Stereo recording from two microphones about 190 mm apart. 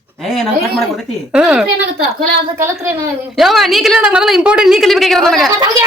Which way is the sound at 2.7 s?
5° right (ahead or behind).